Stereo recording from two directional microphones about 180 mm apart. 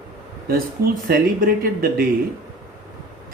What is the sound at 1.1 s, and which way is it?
Speech, 55° right (ahead or behind).